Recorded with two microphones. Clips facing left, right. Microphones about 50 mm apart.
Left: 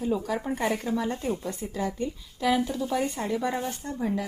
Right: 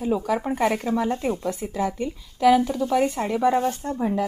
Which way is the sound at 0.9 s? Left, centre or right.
Centre.